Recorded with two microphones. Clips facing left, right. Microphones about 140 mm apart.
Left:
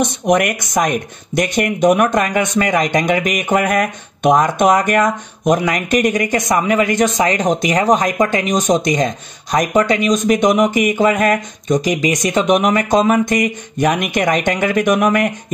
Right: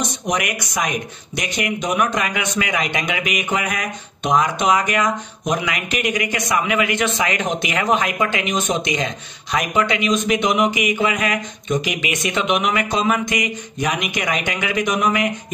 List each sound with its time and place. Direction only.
0.0 s speech: 55° left (ahead or behind)